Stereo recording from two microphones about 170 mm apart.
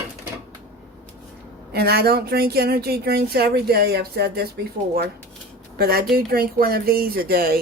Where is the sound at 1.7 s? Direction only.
70° right (ahead or behind).